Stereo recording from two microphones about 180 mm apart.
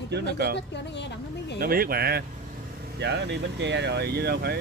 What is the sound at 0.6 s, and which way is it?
A woman's voice, 75° left (ahead or behind).